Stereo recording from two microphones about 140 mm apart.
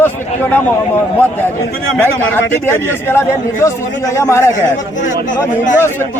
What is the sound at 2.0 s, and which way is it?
A man's voice, 15° left (ahead or behind).